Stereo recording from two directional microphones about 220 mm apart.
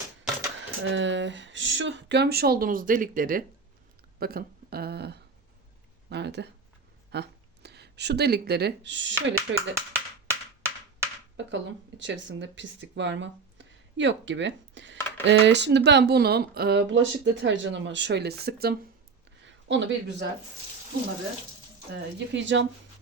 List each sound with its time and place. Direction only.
0.9 s speech: 55° right (ahead or behind)
9.3 s clapping: 10° right (ahead or behind)
11.3 s speech: 55° right (ahead or behind)
19.5 s speech: 55° right (ahead or behind)
22.3 s speech: 55° right (ahead or behind)